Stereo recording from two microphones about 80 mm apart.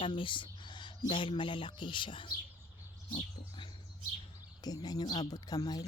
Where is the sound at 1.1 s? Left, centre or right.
Left.